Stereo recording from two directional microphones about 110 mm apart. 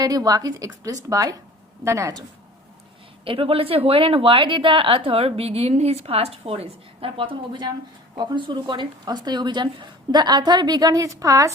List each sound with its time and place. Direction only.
0.0 s speech: 35° right (ahead or behind)
3.2 s a woman's voice: 55° right (ahead or behind); by 11.5 s 30° right (ahead or behind)